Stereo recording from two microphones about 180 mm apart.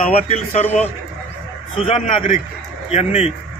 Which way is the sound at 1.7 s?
30° left (ahead or behind).